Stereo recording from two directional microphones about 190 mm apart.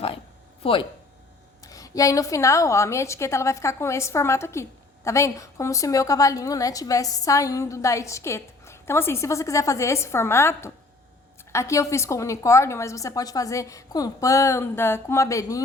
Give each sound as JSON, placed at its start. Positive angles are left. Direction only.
{"t": 0.6, "sound": "a woman's voice", "side_deg": 25}